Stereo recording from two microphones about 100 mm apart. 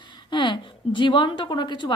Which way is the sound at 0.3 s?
50° left (ahead or behind).